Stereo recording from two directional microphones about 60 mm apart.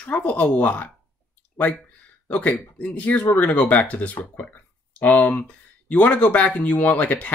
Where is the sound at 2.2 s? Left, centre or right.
Left.